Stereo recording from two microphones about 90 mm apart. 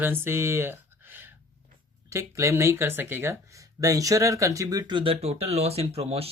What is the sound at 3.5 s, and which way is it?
Speech, 35° right (ahead or behind).